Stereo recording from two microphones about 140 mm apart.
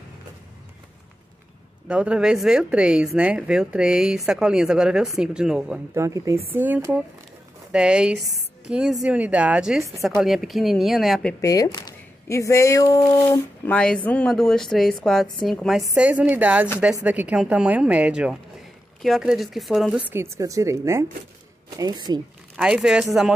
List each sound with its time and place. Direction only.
1.9 s a woman's voice: 5° right (ahead or behind)
5.9 s a woman's voice: 20° right (ahead or behind); by 11.3 s centre (ahead or behind)
11.4 s speech: 25° left (ahead or behind)
13.7 s speech: 10° left (ahead or behind)
15.9 s a woman's voice: 10° right (ahead or behind)
20.1 s a woman's voice: 20° right (ahead or behind)
22.6 s speech: 5° right (ahead or behind)